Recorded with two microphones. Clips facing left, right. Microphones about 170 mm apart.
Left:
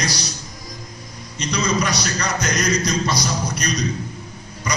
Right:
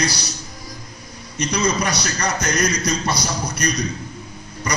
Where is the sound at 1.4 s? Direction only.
60° right (ahead or behind).